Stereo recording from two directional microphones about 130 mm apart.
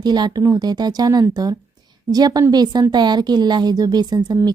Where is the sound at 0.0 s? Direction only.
35° right (ahead or behind).